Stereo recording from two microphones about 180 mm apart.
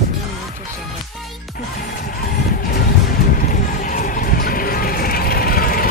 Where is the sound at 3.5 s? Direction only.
50° left (ahead or behind).